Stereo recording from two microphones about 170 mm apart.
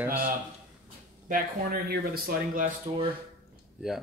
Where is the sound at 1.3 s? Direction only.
65° right (ahead or behind).